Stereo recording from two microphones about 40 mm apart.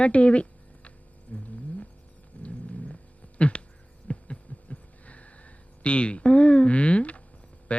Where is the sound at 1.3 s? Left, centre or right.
Left.